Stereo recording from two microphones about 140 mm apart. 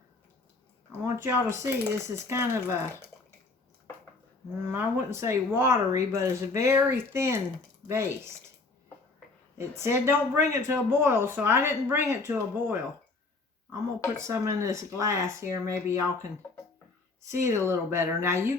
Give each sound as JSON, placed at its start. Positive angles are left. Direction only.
{"t": 1.0, "sound": "speech", "side_deg": -20}
{"t": 4.7, "sound": "speech", "side_deg": -20}
{"t": 9.6, "sound": "speech", "side_deg": -20}
{"t": 14.2, "sound": "speech", "side_deg": -20}
{"t": 17.2, "sound": "speech", "side_deg": -20}